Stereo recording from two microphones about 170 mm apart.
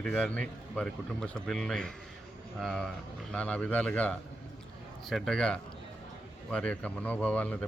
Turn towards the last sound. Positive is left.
turn(degrees=10)  # may be behind; listen again after turning